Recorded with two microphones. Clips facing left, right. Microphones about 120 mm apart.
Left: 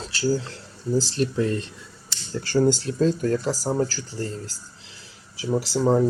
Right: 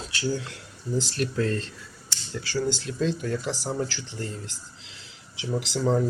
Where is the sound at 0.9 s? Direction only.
30° left (ahead or behind).